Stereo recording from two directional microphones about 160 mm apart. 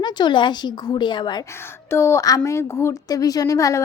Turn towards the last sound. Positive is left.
turn(degrees=20)  # may be behind; listen again after turning